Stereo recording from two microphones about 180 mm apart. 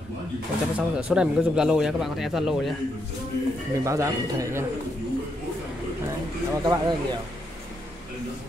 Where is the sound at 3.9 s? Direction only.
15° right (ahead or behind).